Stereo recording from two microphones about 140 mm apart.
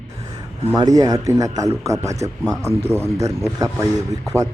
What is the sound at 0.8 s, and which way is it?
Speech, 25° right (ahead or behind).